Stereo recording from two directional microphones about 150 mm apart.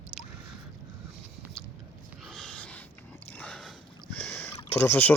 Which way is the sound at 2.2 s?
Centre (ahead or behind).